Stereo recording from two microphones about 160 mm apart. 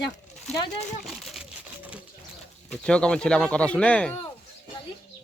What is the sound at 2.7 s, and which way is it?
Speech, 5° left (ahead or behind).